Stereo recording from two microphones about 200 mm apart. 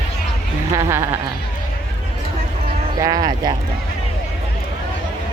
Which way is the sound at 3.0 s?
20° right (ahead or behind).